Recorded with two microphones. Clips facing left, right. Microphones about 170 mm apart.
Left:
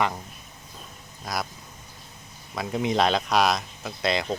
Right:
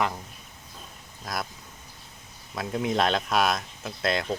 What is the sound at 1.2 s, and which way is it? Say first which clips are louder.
Speech: left 2 dB; centre (ahead or behind).